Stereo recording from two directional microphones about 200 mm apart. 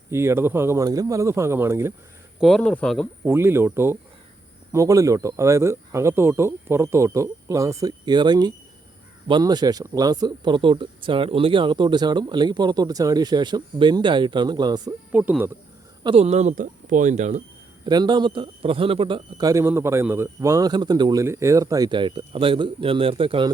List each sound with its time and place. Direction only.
0.1 s speech: 10° right (ahead or behind)
2.4 s speech: 5° left (ahead or behind)
3.2 s speech: 10° right (ahead or behind)
15.1 s speech: 10° right (ahead or behind)
16.0 s speech: 30° right (ahead or behind)
17.8 s speech: 20° right (ahead or behind)